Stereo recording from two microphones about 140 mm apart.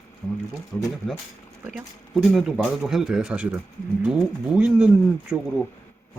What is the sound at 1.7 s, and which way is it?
Speech, centre (ahead or behind).